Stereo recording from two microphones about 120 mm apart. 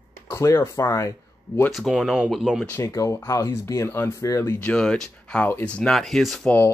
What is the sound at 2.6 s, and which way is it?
Speech, 20° left (ahead or behind).